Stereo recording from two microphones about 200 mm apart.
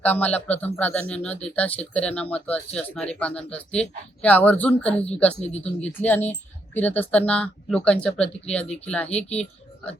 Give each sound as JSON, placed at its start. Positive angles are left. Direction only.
{"t": 0.0, "sound": "speech", "side_deg": 5}
{"t": 5.3, "sound": "speech", "side_deg": 30}
{"t": 5.8, "sound": "speech", "side_deg": 10}